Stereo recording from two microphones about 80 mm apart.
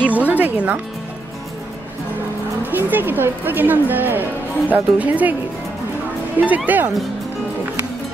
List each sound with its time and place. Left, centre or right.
0.1 s music: centre
2.7 s speech: right
6.4 s speech: centre